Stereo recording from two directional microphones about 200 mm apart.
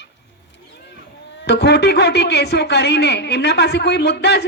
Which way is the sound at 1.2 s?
60° left (ahead or behind).